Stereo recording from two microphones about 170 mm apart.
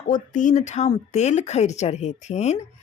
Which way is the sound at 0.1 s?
45° left (ahead or behind).